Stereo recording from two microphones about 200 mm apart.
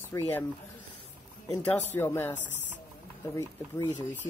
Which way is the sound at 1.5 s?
10° left (ahead or behind).